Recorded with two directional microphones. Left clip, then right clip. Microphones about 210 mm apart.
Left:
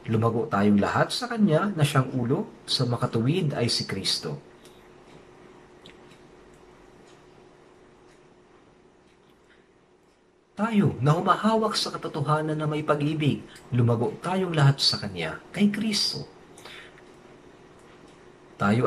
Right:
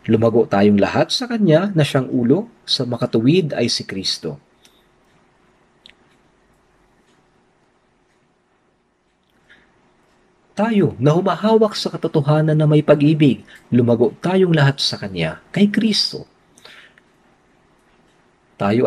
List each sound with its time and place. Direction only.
0.0 s speech: 45° right (ahead or behind)
10.5 s speech: 45° right (ahead or behind)
18.6 s speech: 45° right (ahead or behind)